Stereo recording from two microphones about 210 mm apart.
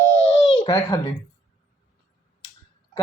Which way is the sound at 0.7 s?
15° left (ahead or behind).